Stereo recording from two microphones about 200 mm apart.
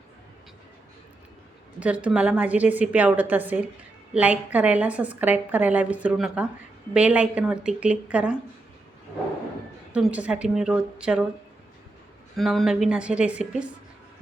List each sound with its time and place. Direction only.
1.8 s a woman's voice: 5° right (ahead or behind)
9.9 s a woman's voice: 5° right (ahead or behind)
12.4 s a woman's voice: centre (ahead or behind)